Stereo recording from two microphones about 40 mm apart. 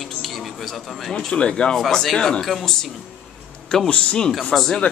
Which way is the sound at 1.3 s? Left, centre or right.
Left.